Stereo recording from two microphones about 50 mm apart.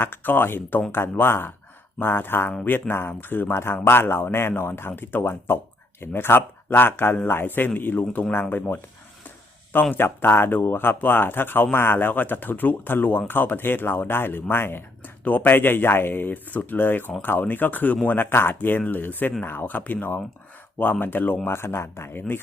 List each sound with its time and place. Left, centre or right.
0.0 s speech: left
9.9 s speech: left
15.0 s speech: left
21.4 s speech: left